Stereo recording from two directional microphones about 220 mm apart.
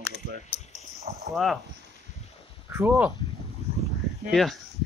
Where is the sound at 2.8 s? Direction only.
10° right (ahead or behind).